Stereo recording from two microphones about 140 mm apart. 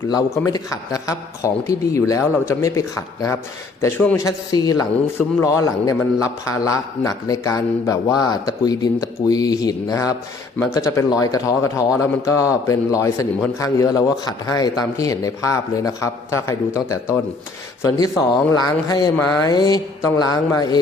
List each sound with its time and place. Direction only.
0.3 s a man's voice: 25° left (ahead or behind)